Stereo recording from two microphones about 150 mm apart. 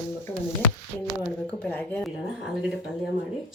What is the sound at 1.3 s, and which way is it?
Speech, 5° left (ahead or behind).